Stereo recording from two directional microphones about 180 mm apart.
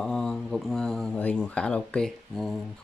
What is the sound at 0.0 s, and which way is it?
Speech, 5° left (ahead or behind).